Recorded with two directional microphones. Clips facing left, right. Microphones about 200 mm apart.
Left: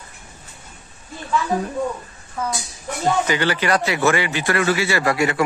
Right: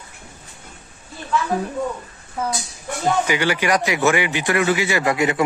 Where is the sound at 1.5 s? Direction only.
5° right (ahead or behind).